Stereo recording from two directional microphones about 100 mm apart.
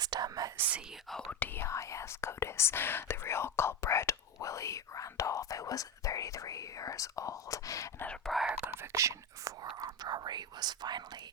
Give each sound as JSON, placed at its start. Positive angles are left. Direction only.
{"t": 0.0, "sound": "speech", "side_deg": -40}
{"t": 0.5, "sound": "speech", "side_deg": -20}
{"t": 1.1, "sound": "speech", "side_deg": 15}
{"t": 1.6, "sound": "speech", "side_deg": 30}
{"t": 8.3, "sound": "speech", "side_deg": -5}
{"t": 8.6, "sound": "speech", "side_deg": -25}
{"t": 9.8, "sound": "speech", "side_deg": -45}